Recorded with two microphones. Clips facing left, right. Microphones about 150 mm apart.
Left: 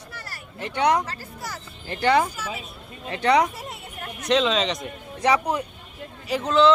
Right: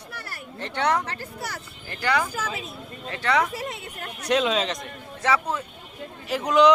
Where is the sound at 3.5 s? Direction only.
90° right.